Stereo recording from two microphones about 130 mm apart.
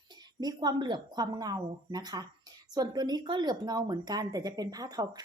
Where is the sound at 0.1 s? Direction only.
30° right (ahead or behind).